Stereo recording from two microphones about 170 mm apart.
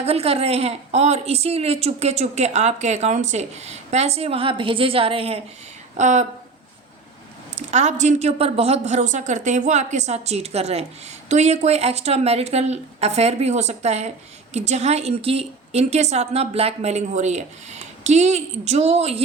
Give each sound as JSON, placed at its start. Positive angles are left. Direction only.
{"t": 0.0, "sound": "a woman's voice", "side_deg": -35}
{"t": 6.0, "sound": "a woman's voice", "side_deg": -45}
{"t": 7.5, "sound": "a woman's voice", "side_deg": -40}